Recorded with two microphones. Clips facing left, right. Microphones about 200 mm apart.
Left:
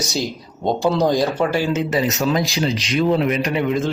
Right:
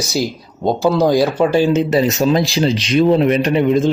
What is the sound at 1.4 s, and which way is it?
Speech, 20° right (ahead or behind).